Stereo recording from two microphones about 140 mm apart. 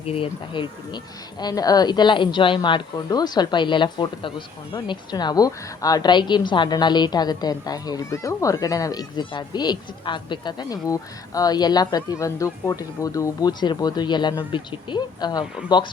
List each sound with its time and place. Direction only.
0.0 s speech: 40° left (ahead or behind)